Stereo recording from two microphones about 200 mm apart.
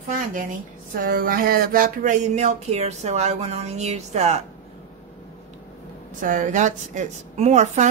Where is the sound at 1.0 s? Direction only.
45° right (ahead or behind).